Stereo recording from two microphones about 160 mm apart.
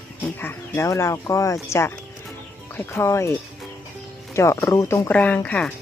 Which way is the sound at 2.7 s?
15° left (ahead or behind).